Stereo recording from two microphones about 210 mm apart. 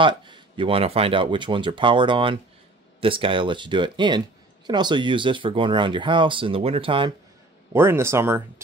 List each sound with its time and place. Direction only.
0.0 s speech: 20° right (ahead or behind)
7.7 s speech: 10° right (ahead or behind)